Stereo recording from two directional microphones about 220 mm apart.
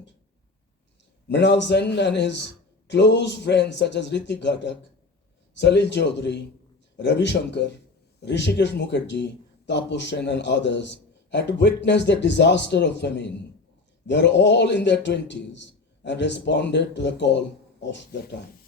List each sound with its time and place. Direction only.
1.3 s a man's voice: 50° left (ahead or behind)